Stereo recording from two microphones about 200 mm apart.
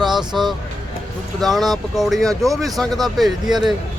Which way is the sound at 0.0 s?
Centre (ahead or behind).